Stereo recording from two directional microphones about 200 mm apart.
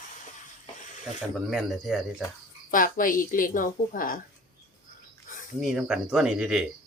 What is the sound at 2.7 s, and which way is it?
A woman's voice, 45° left (ahead or behind).